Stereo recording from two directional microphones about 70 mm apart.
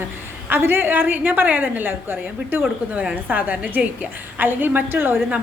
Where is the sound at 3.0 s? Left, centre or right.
Centre.